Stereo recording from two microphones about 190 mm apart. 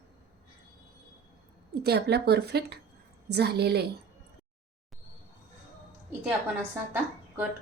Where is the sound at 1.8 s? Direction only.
60° right (ahead or behind).